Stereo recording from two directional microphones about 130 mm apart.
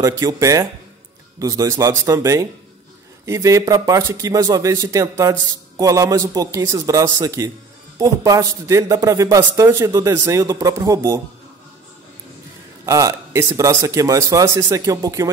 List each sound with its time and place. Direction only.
0.0 s a man's voice: 25° right (ahead or behind)
12.8 s a man's voice: 25° right (ahead or behind)